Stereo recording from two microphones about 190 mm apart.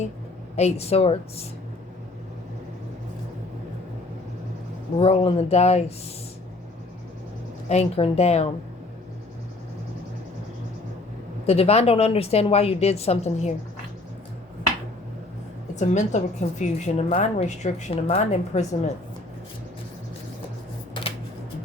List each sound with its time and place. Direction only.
0.5 s a woman's voice: 35° left (ahead or behind)
4.9 s a woman's voice: 30° left (ahead or behind)
7.7 s a woman's voice: 30° left (ahead or behind)
11.4 s a woman's voice: 30° left (ahead or behind)
15.7 s a woman's voice: 40° left (ahead or behind)